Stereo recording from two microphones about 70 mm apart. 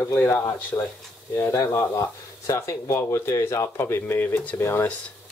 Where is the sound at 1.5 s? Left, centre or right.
Left.